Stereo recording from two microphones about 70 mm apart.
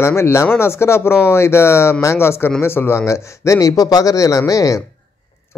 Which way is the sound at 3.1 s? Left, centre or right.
Left.